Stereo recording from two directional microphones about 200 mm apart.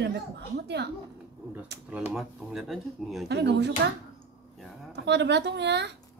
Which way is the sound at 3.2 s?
60° right (ahead or behind).